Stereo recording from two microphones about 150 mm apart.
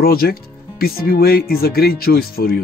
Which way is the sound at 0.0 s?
80° left.